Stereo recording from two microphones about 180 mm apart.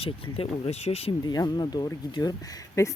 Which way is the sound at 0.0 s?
35° left (ahead or behind).